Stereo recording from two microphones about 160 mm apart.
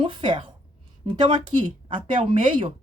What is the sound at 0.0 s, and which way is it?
A woman's voice, 30° right (ahead or behind).